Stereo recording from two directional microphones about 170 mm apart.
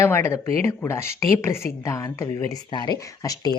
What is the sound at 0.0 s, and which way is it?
Speech, 15° left (ahead or behind).